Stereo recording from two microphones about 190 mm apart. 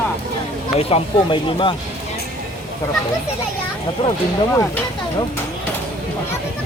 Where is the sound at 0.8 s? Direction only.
30° left (ahead or behind).